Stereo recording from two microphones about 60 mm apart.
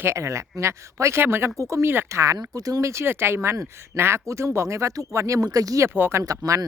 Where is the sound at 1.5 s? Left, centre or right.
Right.